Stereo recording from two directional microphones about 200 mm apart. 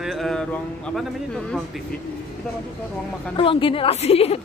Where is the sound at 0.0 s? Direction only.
Centre (ahead or behind).